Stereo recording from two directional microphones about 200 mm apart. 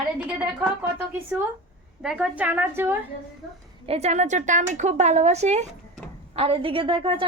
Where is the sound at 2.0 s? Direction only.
5° right (ahead or behind).